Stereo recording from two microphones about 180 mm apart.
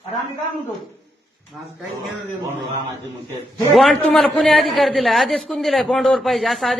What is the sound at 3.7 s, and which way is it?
A man's voice, centre (ahead or behind).